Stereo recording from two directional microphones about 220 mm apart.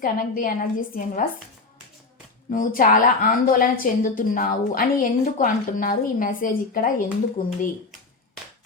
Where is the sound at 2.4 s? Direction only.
40° left (ahead or behind).